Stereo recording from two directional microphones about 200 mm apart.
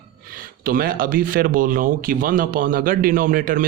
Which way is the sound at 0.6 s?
45° right (ahead or behind).